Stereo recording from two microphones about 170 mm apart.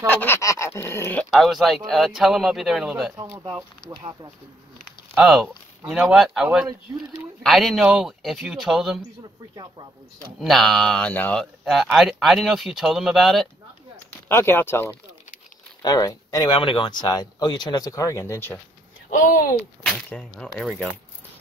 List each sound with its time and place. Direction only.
0.2 s dog: 15° left (ahead or behind)
1.3 s speech: centre (ahead or behind)
3.2 s speech: 20° right (ahead or behind)
5.1 s speech: centre (ahead or behind)
10.4 s speech: centre (ahead or behind)
14.3 s dog: 15° left (ahead or behind)
15.8 s speech: 20° left (ahead or behind)
19.9 s speech: 5° left (ahead or behind)